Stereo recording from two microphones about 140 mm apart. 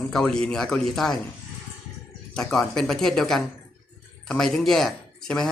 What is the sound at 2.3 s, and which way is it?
A man's voice, 5° left (ahead or behind).